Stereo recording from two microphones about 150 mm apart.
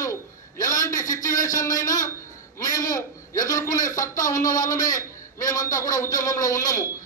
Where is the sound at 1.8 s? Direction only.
25° left (ahead or behind).